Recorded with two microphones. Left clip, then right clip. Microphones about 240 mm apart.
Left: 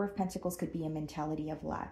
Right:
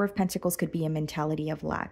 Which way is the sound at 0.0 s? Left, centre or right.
Right.